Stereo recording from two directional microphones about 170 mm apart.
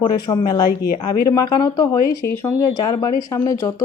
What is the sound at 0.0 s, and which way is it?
Speech, 30° left (ahead or behind).